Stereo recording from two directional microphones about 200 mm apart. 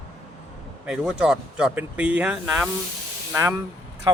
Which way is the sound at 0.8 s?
5° right (ahead or behind).